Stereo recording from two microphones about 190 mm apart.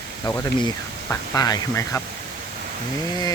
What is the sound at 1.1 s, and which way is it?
Speech, 20° left (ahead or behind).